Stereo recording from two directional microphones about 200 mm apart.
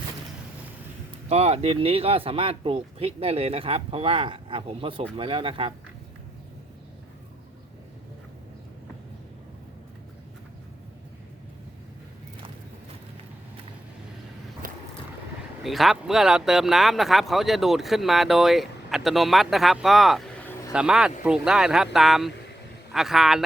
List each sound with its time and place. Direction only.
1.3 s speech: 30° right (ahead or behind)
14.6 s vehicle: 45° right (ahead or behind)
15.6 s speech: centre (ahead or behind)
20.7 s speech: 5° right (ahead or behind)